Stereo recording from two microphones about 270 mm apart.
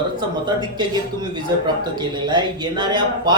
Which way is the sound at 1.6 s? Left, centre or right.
Centre.